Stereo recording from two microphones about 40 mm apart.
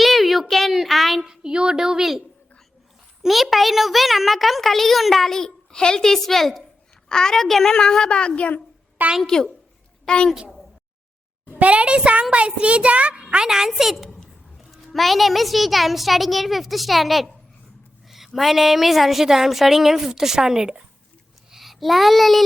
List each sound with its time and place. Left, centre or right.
0.0 s a sound: centre
1.2 s a woman's voice: centre
3.2 s a child's voice: centre
7.1 s a woman's voice: centre
11.6 s a child's voice: right
13.3 s a woman's voice: centre
13.9 s a woman's voice: centre
18.3 s a woman's voice: centre
21.5 s child singing: centre